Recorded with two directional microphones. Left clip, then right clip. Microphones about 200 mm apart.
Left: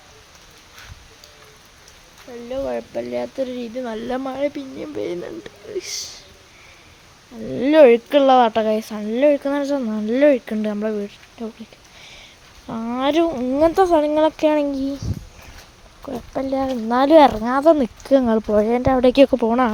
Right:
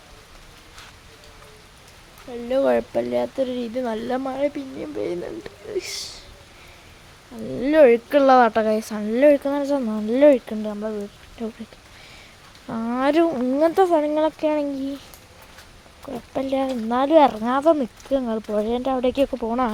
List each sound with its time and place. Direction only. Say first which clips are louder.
2.5 s speech: right 6 dB; 40° right (ahead or behind)
2.9 s speech: right 2 dB; 10° right (ahead or behind)
7.5 s speech: left 3 dB; 15° left (ahead or behind)
8.2 s speech: right 1 dB; 5° left (ahead or behind)
10.7 s speech: left 5 dB; 30° left (ahead or behind)
11.4 s speech: even; centre (ahead or behind)
12.6 s speech: even; centre (ahead or behind); by 14.9 s 15° left (ahead or behind)
16.3 s speech: left 1 dB; 5° left (ahead or behind)
17.0 s speech: left 4 dB; 20° left (ahead or behind)